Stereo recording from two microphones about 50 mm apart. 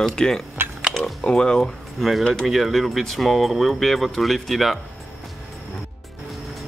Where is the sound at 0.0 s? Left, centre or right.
Centre.